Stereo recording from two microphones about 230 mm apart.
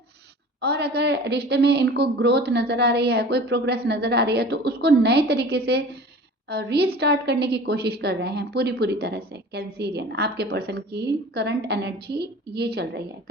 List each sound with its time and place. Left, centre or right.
0.6 s a woman's voice: right